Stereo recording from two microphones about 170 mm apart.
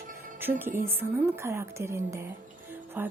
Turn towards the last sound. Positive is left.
turn(degrees=-10)  # may be behind; listen again after turning